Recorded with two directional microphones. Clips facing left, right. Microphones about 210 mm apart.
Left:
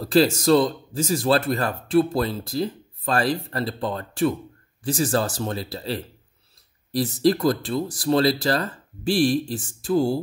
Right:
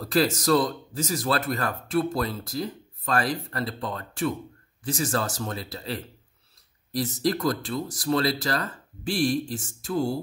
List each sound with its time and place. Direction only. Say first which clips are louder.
0.0 s speech: left 5 dB; 30° left (ahead or behind)